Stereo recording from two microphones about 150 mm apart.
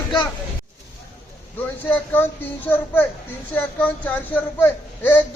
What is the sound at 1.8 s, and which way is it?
Speech, 15° left (ahead or behind).